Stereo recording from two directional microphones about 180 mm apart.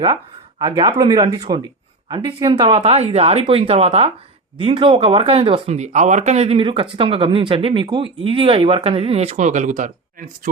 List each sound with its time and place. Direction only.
0.6 s speech: 25° right (ahead or behind); by 10.5 s 45° right (ahead or behind)